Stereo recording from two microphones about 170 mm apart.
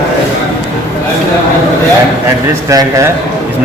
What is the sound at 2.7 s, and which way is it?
Speech, 20° right (ahead or behind).